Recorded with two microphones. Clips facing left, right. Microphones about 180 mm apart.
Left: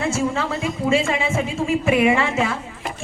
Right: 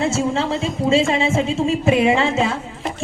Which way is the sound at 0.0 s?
25° right (ahead or behind).